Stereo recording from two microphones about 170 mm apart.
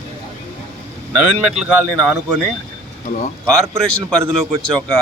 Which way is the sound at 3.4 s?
5° left (ahead or behind).